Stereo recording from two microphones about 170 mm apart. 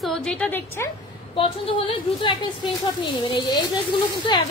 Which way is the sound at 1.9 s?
30° left (ahead or behind).